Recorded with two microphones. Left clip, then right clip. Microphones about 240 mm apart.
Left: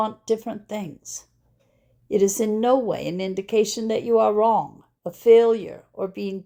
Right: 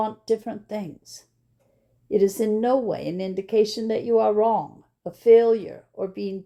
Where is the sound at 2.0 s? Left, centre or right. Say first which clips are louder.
Even; left.